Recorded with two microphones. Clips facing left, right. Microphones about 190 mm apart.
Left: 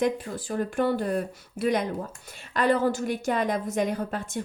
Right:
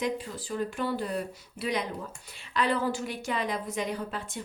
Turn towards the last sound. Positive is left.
turn(degrees=45)  # may be behind; listen again after turning